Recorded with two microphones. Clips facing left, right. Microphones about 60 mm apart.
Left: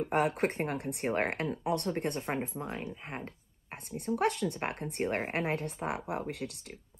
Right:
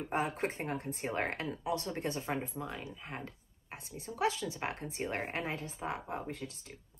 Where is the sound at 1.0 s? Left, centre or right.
Left.